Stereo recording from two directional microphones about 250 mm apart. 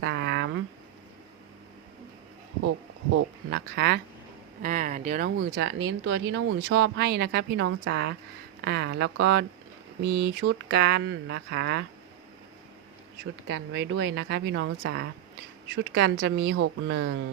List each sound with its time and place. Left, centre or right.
0.0 s a sound: right
3.5 s speech: right
4.6 s speech: right
13.5 s speech: right